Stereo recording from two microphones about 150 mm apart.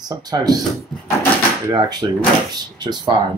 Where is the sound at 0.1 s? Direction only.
25° right (ahead or behind).